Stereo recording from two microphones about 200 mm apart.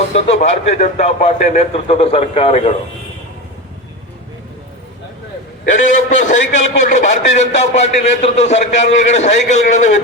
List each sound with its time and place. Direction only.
0.1 s speech: 35° left (ahead or behind)
5.6 s speech: 40° left (ahead or behind)